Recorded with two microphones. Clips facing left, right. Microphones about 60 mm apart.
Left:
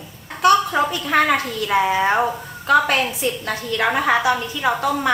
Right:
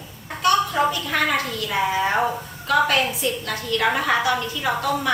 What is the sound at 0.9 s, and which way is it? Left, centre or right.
A woman's voice, left.